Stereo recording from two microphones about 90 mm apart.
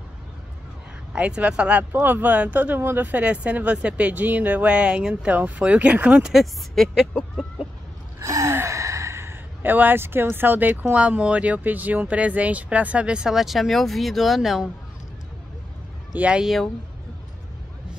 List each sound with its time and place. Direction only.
1.1 s speech: 15° right (ahead or behind)
8.2 s speech: 35° right (ahead or behind); by 14.7 s 5° right (ahead or behind)
16.2 s speech: 10° right (ahead or behind)